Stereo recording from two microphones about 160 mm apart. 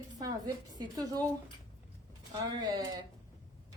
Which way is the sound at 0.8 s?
25° right (ahead or behind).